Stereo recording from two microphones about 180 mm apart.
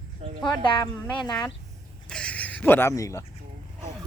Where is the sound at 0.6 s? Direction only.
25° left (ahead or behind).